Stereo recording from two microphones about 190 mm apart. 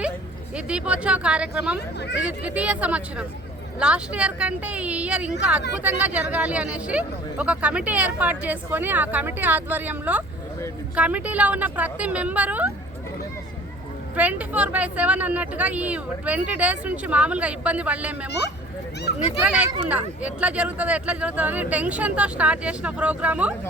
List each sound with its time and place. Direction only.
0.5 s speech: 5° right (ahead or behind)
2.0 s speech: 60° left (ahead or behind)
2.4 s speech: 5° right (ahead or behind)
14.2 s speech: 10° right (ahead or behind)
19.4 s speech: 5° right (ahead or behind)